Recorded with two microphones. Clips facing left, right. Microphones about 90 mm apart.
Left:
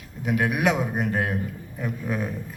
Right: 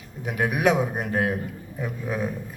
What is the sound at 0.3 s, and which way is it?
A man's voice, centre (ahead or behind).